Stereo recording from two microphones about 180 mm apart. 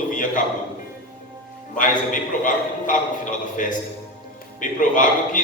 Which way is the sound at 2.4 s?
45° left (ahead or behind).